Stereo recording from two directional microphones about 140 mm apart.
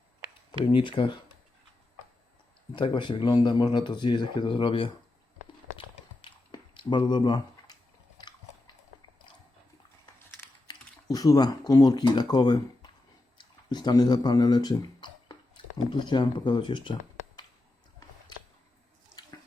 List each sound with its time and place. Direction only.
0.6 s speech: 35° left (ahead or behind)
2.7 s speech: 35° left (ahead or behind)
6.2 s a sound: 35° left (ahead or behind)
10.7 s typing: 25° left (ahead or behind)
11.7 s speech: 30° left (ahead or behind)